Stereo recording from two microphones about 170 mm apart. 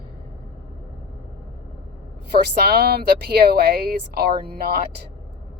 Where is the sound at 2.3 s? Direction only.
70° right (ahead or behind).